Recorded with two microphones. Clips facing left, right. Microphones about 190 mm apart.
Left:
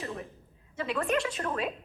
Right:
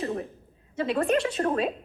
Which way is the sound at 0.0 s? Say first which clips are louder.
Right 7 dB; 35° right (ahead or behind).